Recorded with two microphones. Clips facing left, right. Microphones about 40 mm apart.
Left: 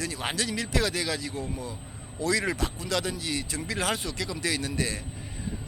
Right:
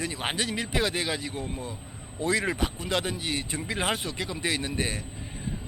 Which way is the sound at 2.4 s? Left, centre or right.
Right.